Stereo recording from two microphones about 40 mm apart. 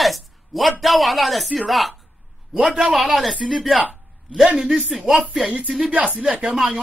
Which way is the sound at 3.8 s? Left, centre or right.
Right.